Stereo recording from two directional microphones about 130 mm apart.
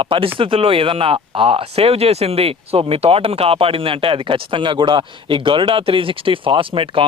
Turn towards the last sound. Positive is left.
turn(degrees=-40)  # may be behind; listen again after turning